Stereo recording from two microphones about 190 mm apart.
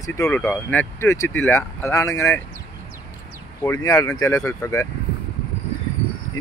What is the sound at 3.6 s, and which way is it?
Speech, 15° left (ahead or behind).